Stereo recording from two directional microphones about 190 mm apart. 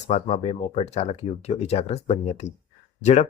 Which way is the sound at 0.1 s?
35° left (ahead or behind).